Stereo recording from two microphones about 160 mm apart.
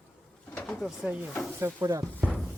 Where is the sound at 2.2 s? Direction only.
10° left (ahead or behind).